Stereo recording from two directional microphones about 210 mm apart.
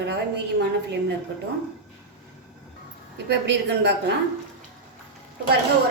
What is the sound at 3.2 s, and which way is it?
Speech, 55° right (ahead or behind).